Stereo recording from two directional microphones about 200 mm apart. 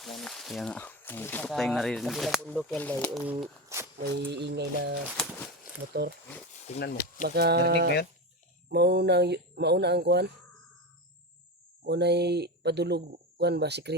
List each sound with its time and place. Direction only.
0.0 s speech: centre (ahead or behind)
4.0 s speech: 60° right (ahead or behind)
5.1 s speech: 10° left (ahead or behind)
5.9 s speech: 55° right (ahead or behind)
7.3 s a sound: 55° right (ahead or behind)
8.7 s speech: 55° right (ahead or behind)
11.8 s speech: 55° right (ahead or behind)